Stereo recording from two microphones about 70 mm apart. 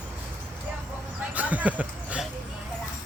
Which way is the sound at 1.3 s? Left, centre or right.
Right.